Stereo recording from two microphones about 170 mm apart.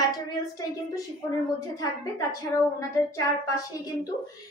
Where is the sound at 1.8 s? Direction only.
20° left (ahead or behind).